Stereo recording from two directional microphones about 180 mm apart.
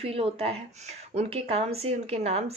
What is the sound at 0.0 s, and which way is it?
A woman's voice, 35° right (ahead or behind).